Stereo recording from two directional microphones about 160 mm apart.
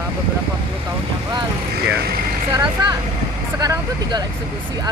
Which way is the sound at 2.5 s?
30° right (ahead or behind).